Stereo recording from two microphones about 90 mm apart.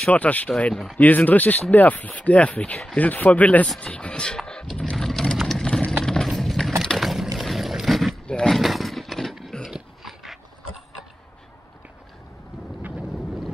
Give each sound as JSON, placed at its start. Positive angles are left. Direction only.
{"t": 0.1, "sound": "speech", "side_deg": 15}
{"t": 3.8, "sound": "vehicle", "side_deg": 15}
{"t": 6.0, "sound": "horse", "side_deg": 5}
{"t": 6.8, "sound": "boat", "side_deg": 0}
{"t": 7.3, "sound": "a sound", "side_deg": 0}